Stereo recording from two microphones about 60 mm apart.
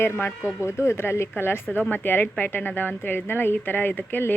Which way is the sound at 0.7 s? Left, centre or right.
Left.